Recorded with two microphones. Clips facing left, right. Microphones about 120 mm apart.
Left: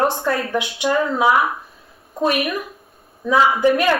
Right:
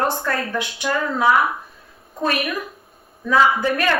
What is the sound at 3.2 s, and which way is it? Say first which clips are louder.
Speech: left 2 dB; 15° left (ahead or behind).